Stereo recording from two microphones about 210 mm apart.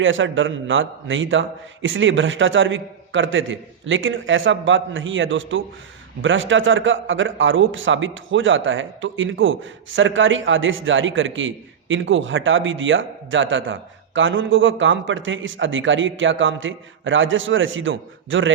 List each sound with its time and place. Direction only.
0.0 s a man's voice: 65° right (ahead or behind)